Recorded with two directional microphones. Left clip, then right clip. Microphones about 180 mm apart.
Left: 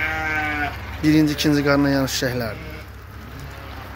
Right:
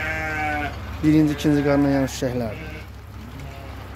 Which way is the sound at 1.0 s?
10° right (ahead or behind).